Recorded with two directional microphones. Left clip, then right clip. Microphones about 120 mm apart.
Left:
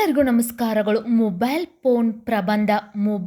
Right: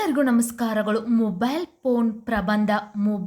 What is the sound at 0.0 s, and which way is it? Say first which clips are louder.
A woman's voice: left 3 dB; 20° left (ahead or behind).